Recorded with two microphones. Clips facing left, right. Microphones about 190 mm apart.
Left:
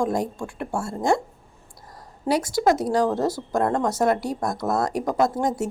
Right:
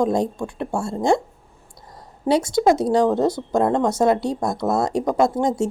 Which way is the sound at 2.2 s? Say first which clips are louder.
Right 3 dB; 25° right (ahead or behind).